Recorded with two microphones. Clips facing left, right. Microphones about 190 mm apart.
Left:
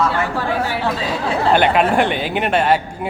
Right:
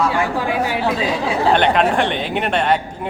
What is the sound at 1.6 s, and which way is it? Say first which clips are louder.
A man's voice: left 1 dB; 5° left (ahead or behind).